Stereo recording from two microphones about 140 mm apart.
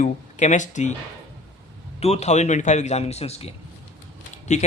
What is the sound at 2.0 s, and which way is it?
A man's voice, 50° left (ahead or behind).